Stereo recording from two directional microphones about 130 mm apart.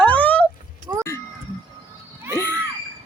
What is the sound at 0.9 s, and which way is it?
Speech, 30° right (ahead or behind).